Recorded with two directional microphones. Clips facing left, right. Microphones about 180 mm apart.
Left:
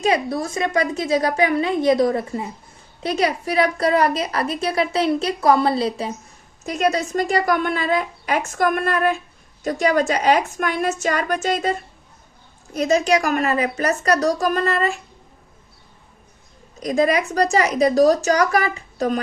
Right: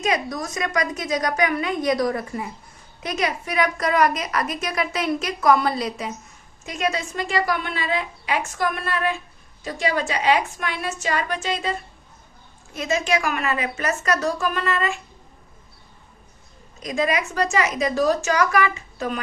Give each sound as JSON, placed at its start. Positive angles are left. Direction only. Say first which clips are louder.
{"t": 0.0, "sound": "a woman's voice", "louder": "left 4 dB", "side_deg": 30}
{"t": 16.8, "sound": "a woman's voice", "louder": "left 5 dB", "side_deg": 35}